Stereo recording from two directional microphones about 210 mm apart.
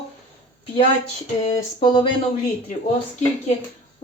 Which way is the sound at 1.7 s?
25° left (ahead or behind).